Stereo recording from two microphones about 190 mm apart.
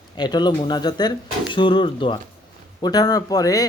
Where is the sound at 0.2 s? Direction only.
20° left (ahead or behind).